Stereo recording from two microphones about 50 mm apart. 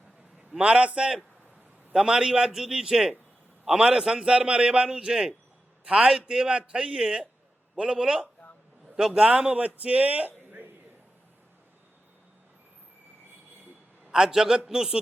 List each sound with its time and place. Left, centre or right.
0.6 s a man's voice: right
14.1 s a man's voice: centre